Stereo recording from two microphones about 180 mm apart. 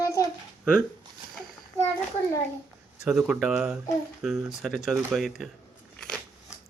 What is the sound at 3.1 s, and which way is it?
Speech, 5° right (ahead or behind).